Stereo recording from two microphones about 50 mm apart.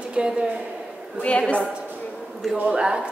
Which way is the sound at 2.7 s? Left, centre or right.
Centre.